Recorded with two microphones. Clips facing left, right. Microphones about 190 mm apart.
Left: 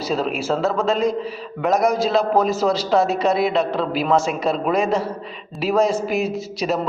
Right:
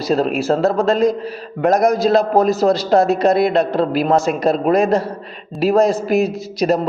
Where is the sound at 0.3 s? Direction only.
45° right (ahead or behind).